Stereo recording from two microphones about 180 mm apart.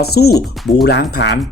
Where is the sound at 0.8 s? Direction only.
75° left (ahead or behind).